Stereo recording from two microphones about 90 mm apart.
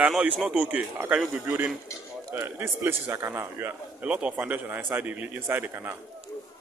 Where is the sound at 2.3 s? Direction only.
25° right (ahead or behind).